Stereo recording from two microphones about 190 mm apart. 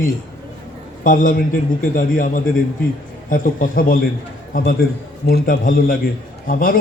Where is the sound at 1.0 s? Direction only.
45° left (ahead or behind).